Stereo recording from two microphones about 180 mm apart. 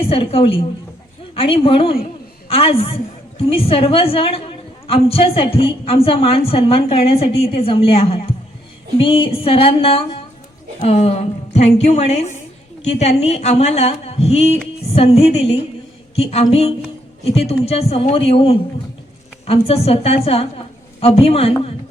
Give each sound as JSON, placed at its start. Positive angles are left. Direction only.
{"t": 0.0, "sound": "a woman's voice", "side_deg": 30}